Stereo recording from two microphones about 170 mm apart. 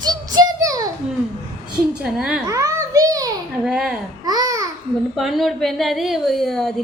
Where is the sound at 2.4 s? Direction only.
20° right (ahead or behind).